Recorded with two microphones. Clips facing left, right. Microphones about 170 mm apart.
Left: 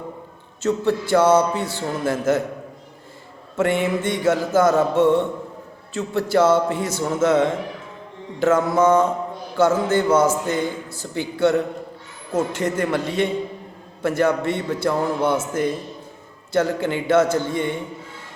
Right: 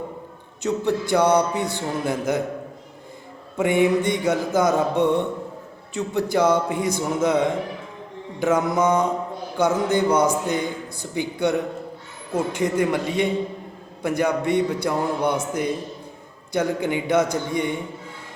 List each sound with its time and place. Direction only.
0.6 s a man's voice: 15° right (ahead or behind)
3.6 s a man's voice: 15° right (ahead or behind)
16.5 s a man's voice: 15° right (ahead or behind)